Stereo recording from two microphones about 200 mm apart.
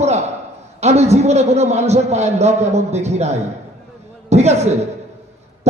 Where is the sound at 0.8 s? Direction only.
35° right (ahead or behind).